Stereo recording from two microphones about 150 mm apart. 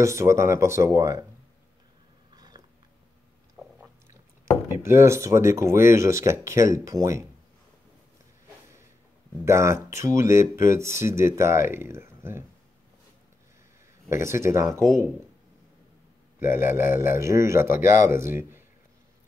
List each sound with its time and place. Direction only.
0.0 s speech: 20° right (ahead or behind)
2.3 s biting: 25° right (ahead or behind)
3.6 s biting: 10° right (ahead or behind)
4.8 s speech: 20° right (ahead or behind)
9.4 s speech: 20° right (ahead or behind)
14.0 s speech: 20° right (ahead or behind)
16.3 s speech: 15° right (ahead or behind)